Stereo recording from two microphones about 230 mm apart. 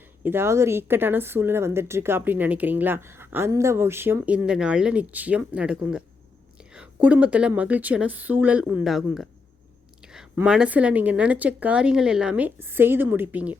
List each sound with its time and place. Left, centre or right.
0.2 s a woman's voice: centre